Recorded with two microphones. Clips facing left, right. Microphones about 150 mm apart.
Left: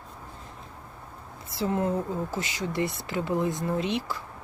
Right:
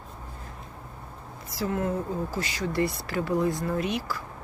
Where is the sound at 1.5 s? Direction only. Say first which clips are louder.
Left 1 dB; 25° left (ahead or behind).